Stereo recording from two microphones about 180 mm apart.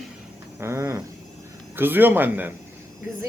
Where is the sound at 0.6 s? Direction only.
15° right (ahead or behind).